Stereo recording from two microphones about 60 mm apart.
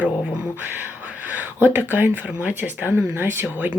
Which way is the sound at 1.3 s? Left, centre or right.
Right.